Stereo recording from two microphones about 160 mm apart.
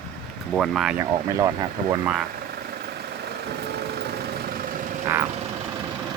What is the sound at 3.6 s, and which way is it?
Vehicle, 85° right.